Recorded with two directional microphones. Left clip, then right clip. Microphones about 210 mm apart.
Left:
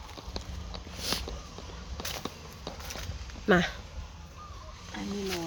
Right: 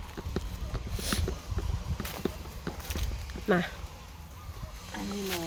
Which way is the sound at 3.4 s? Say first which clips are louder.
Left 3 dB; 15° left (ahead or behind).